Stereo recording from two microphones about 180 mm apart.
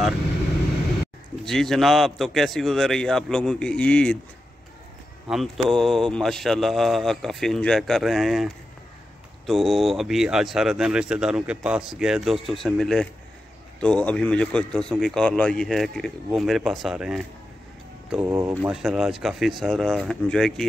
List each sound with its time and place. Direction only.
1.4 s speech: centre (ahead or behind)
5.3 s speech: centre (ahead or behind)
18.1 s speech: 15° right (ahead or behind)
18.7 s speech: centre (ahead or behind)